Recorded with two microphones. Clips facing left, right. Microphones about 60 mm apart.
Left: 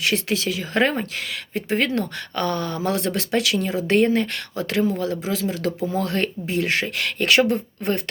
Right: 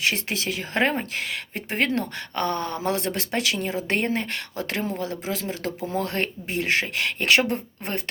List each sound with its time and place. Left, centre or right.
0.0 s speech: right